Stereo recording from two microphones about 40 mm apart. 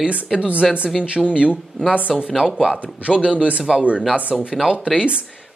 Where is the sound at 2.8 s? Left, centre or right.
Right.